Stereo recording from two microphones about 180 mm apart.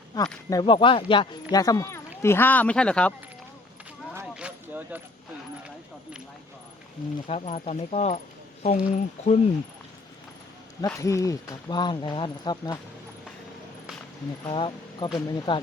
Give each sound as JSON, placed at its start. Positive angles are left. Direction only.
{"t": 0.1, "sound": "speech", "side_deg": 20}
{"t": 4.1, "sound": "a sound", "side_deg": -10}
{"t": 7.3, "sound": "speech", "side_deg": 40}
{"t": 10.8, "sound": "speech", "side_deg": 15}
{"t": 14.4, "sound": "speech", "side_deg": 30}